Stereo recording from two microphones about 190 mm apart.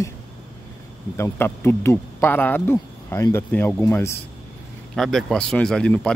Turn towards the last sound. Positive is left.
turn(degrees=5)  # may be behind; listen again after turning